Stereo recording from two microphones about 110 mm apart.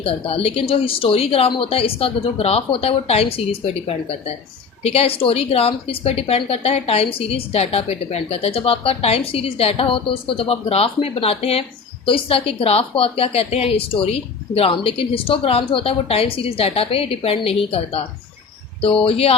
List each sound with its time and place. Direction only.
0.0 s a woman's voice: 60° left (ahead or behind)